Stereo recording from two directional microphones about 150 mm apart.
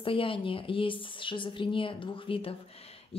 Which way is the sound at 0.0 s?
35° left (ahead or behind).